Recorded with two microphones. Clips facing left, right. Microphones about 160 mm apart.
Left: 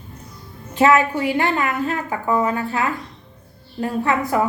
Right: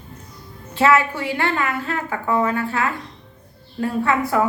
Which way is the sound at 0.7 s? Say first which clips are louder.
Left 2 dB; 15° left (ahead or behind).